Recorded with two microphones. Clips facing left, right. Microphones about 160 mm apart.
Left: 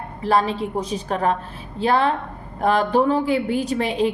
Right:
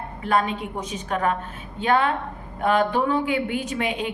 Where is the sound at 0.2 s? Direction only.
35° left (ahead or behind).